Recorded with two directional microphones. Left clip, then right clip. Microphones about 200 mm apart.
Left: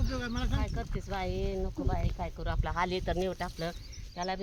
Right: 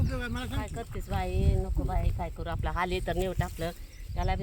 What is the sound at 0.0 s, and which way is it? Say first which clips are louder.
Speech: right 1 dB; 55° right (ahead or behind).